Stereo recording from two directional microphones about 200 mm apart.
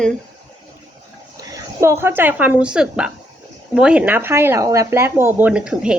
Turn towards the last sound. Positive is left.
turn(degrees=-5)  # may be behind; listen again after turning